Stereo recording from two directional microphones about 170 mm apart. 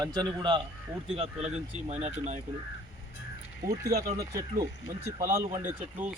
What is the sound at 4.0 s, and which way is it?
Speech, 70° right (ahead or behind).